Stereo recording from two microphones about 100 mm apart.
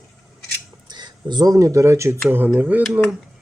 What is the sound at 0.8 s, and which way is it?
Speech, 45° right (ahead or behind).